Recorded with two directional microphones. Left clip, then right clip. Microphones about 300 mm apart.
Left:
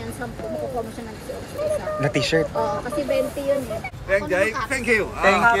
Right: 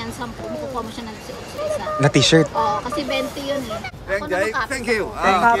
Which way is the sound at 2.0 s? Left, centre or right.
Centre.